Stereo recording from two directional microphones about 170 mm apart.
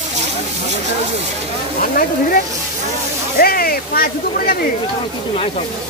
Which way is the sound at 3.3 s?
60° left (ahead or behind).